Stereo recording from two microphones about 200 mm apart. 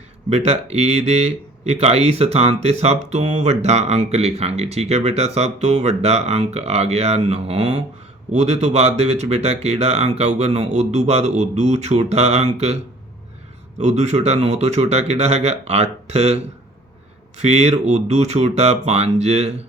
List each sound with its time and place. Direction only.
0.3 s speech: 30° right (ahead or behind)